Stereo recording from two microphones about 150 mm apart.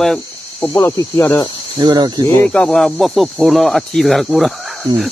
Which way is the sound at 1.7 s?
30° right (ahead or behind).